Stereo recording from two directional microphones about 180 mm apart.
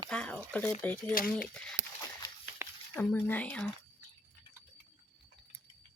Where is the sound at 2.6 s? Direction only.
15° right (ahead or behind).